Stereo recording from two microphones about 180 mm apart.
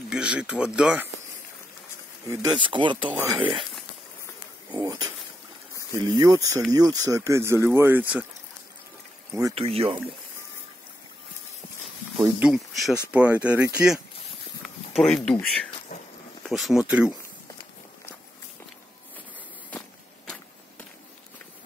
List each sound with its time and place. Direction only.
0.1 s speech: 5° right (ahead or behind)
2.2 s speech: 25° right (ahead or behind)
4.7 s speech: 20° right (ahead or behind)
9.6 s speech: 35° right (ahead or behind)
12.2 s speech: 5° right (ahead or behind)
14.6 s a sound: centre (ahead or behind)
15.3 s speech: 5° left (ahead or behind)